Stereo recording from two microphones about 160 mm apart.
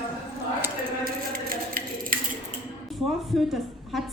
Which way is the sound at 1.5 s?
65° right (ahead or behind).